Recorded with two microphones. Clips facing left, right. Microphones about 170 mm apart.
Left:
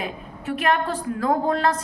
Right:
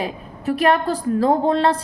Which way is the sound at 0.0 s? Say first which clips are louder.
Right 5 dB; 35° right (ahead or behind).